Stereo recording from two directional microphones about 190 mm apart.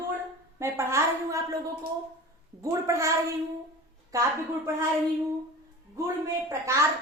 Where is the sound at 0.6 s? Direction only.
15° right (ahead or behind).